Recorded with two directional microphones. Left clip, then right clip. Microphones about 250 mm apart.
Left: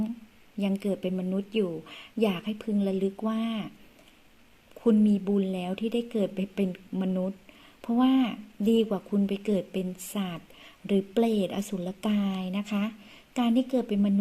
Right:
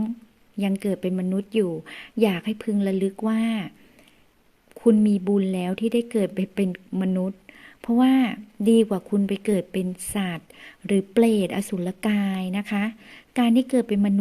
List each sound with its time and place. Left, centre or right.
0.6 s speech: right
4.8 s speech: right